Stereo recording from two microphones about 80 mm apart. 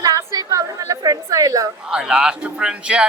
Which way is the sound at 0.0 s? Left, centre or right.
Right.